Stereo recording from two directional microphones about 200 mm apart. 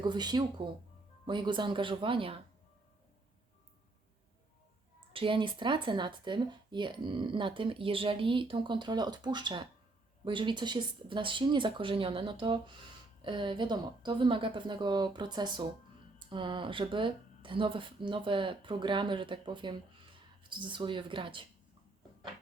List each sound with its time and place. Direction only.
0.0 s speech: 20° right (ahead or behind)
4.9 s speech: 25° right (ahead or behind)